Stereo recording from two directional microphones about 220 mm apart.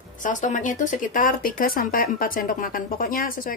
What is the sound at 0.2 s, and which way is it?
Speech, 35° left (ahead or behind).